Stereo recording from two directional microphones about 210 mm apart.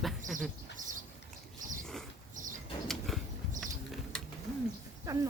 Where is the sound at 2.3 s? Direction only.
40° right (ahead or behind).